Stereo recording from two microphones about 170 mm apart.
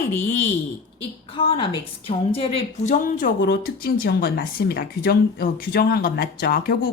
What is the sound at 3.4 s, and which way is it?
Speech, 65° left (ahead or behind).